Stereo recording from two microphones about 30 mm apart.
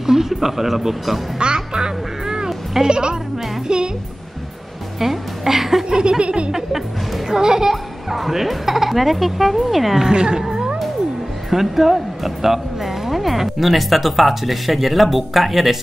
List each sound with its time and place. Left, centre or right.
0.0 s speech: centre
1.4 s music: right
2.8 s laughter: right
3.6 s music: right
5.0 s a woman's voice: centre
5.9 s laughter: right
7.2 s speech: right
7.7 s speech: centre
9.9 s speech: right
10.4 s music: centre
11.5 s speech: centre